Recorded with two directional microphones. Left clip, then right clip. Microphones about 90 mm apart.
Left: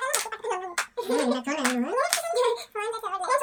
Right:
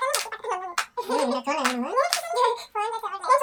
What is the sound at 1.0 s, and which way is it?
Speech, 5° right (ahead or behind).